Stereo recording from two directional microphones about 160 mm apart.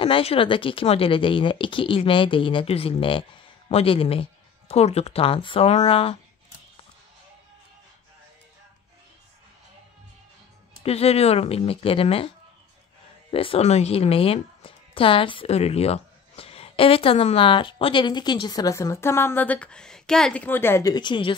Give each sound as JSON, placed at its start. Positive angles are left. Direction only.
{"t": 0.0, "sound": "speech", "side_deg": 35}
{"t": 10.8, "sound": "speech", "side_deg": 40}
{"t": 13.3, "sound": "speech", "side_deg": 35}
{"t": 20.9, "sound": "a woman's voice", "side_deg": 30}